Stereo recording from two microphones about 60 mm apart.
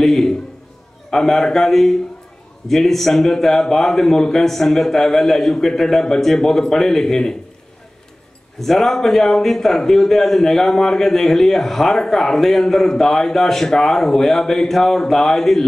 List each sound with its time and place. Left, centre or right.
0.0 s a sound: centre
1.1 s a man's voice: centre
8.5 s a man's voice: centre